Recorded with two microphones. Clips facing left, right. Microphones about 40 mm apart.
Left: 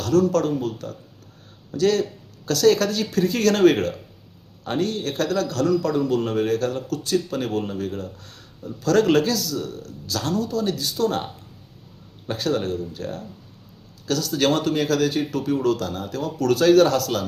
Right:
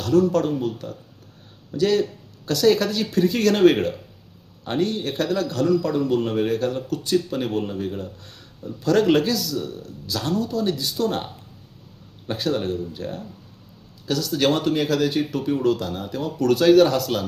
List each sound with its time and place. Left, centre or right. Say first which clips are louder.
0.0 s speech: even; centre
12.3 s speech: even; centre